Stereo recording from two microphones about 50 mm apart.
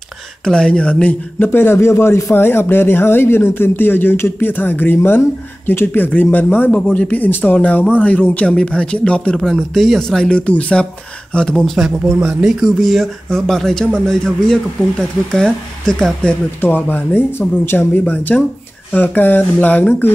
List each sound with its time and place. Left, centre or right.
0.5 s speech: centre
1.4 s speech: left
2.3 s speech: left
7.5 s speech: left
9.4 s speech: centre
10.3 s speech: left
11.5 s speech: centre
16.6 s speech: left
17.4 s speech: left
17.7 s speech: left